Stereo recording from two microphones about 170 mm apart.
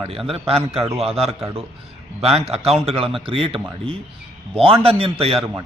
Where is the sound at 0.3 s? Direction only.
35° right (ahead or behind).